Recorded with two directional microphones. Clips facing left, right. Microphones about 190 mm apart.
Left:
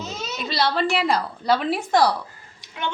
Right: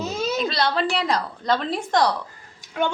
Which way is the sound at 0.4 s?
5° left (ahead or behind).